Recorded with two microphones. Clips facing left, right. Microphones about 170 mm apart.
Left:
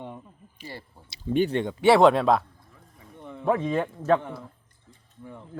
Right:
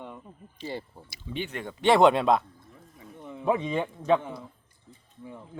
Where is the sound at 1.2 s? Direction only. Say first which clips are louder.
Left 11 dB; 40° left (ahead or behind).